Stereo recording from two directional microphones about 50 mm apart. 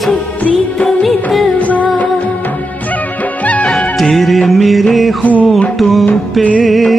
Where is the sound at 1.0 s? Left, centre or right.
Centre.